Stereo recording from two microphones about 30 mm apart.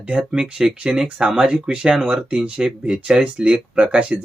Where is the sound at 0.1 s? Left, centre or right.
Right.